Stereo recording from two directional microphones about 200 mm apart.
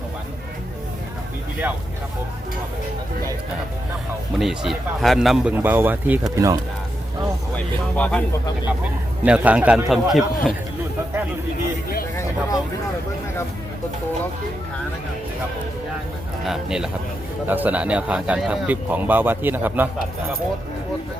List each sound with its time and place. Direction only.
4.4 s a man's voice: centre (ahead or behind)
7.5 s speech: 5° left (ahead or behind)
9.2 s a man's voice: 5° right (ahead or behind)
12.1 s speech: 15° left (ahead or behind)
16.5 s a man's voice: 5° right (ahead or behind)